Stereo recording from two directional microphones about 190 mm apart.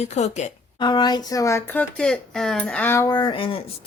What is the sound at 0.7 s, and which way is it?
Speech, 25° left (ahead or behind).